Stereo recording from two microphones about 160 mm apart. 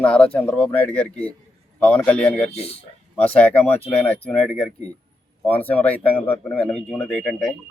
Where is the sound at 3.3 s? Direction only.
10° left (ahead or behind).